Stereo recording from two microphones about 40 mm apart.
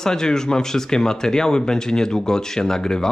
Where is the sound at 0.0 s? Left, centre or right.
Centre.